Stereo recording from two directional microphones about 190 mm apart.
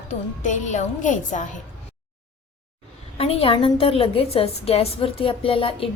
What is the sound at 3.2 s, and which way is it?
A woman's voice, 30° left (ahead or behind).